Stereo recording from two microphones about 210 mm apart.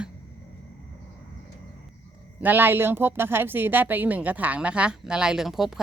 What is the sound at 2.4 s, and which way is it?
A woman's voice, 10° right (ahead or behind).